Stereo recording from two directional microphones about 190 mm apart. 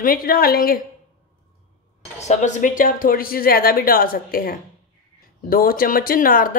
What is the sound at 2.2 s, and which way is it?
A woman's voice, 40° left (ahead or behind).